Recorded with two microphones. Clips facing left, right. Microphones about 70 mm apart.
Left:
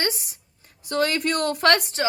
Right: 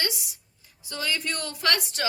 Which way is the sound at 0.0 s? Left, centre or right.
Left.